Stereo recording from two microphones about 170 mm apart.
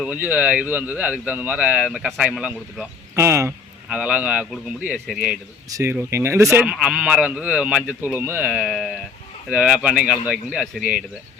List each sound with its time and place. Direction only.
0.0 s speech: 10° right (ahead or behind)
5.7 s speech: 15° right (ahead or behind)
6.7 s speech: 5° right (ahead or behind)